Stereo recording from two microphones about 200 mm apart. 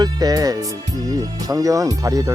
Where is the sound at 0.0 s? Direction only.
20° right (ahead or behind).